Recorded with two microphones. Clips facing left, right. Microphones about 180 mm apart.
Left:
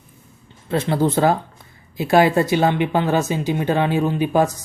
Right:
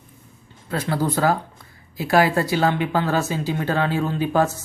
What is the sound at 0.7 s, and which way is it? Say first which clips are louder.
Speech: left 4 dB; 25° left (ahead or behind).